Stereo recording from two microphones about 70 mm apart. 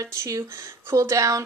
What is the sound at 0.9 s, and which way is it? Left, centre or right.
Speech, right.